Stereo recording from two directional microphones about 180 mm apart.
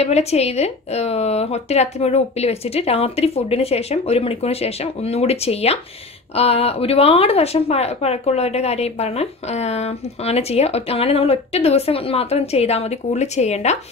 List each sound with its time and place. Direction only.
0.0 s a woman's voice: 35° left (ahead or behind)